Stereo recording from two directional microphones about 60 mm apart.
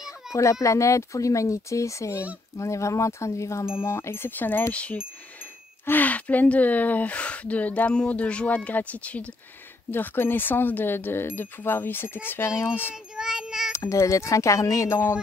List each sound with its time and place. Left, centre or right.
0.3 s speech: left
5.9 s speech: left
9.8 s speech: left
12.9 s child singing: centre
13.7 s speech: left